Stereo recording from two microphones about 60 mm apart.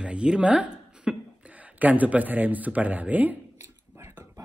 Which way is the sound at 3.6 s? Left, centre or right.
Right.